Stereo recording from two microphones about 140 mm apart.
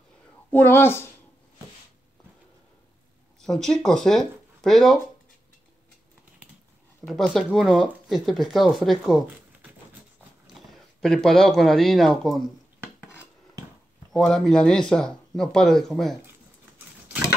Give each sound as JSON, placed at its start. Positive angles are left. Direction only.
{"t": 0.5, "sound": "speech", "side_deg": 15}
{"t": 3.3, "sound": "speech", "side_deg": 5}
{"t": 7.1, "sound": "speech", "side_deg": 0}
{"t": 14.1, "sound": "speech", "side_deg": 5}